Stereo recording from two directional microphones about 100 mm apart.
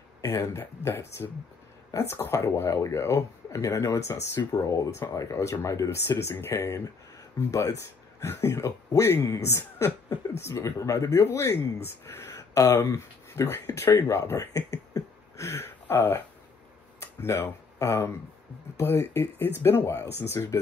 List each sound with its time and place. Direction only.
0.2 s speech: 30° left (ahead or behind)